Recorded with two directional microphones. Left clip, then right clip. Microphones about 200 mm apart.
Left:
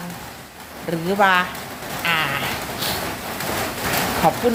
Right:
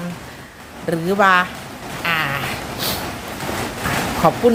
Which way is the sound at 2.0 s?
15° right (ahead or behind).